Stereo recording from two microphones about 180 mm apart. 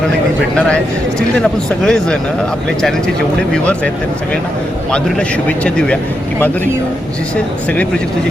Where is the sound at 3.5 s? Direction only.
5° left (ahead or behind).